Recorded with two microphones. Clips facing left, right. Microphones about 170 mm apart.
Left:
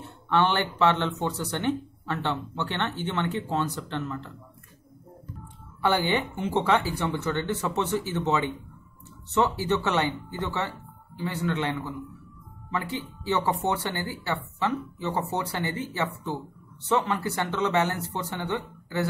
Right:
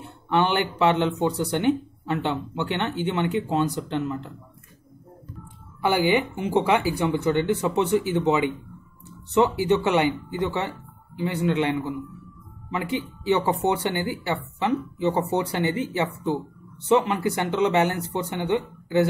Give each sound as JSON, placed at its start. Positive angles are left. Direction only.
{"t": 0.3, "sound": "speech", "side_deg": -15}
{"t": 5.8, "sound": "speech", "side_deg": -10}